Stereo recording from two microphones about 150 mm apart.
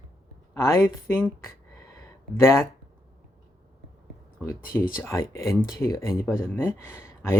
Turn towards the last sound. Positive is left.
turn(degrees=15)  # may be behind; listen again after turning